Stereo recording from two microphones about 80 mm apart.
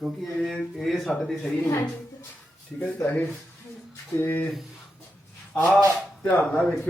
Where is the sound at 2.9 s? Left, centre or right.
Left.